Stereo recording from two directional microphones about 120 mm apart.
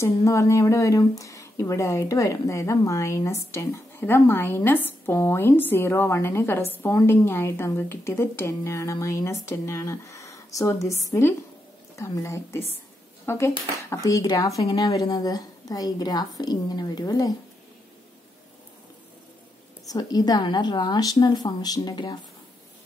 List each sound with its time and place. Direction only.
0.0 s a woman's voice: 25° left (ahead or behind)
19.9 s a woman's voice: 30° left (ahead or behind)